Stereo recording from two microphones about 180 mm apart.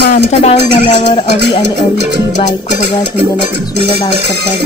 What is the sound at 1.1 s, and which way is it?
Speech, 25° left (ahead or behind).